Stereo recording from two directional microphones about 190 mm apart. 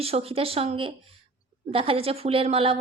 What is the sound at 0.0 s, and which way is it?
A woman's voice, 30° right (ahead or behind).